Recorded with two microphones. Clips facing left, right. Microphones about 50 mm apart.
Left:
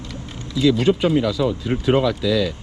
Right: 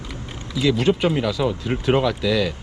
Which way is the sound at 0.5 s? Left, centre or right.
Centre.